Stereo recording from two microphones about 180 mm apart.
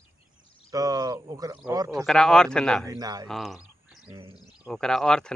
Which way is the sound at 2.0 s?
5° left (ahead or behind).